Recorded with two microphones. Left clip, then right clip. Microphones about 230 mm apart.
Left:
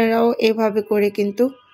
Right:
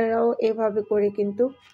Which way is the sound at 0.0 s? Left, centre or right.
Left.